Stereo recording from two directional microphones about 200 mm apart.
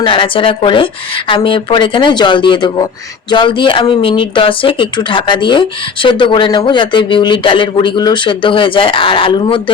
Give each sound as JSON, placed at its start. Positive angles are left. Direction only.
{"t": 0.0, "sound": "speech", "side_deg": 25}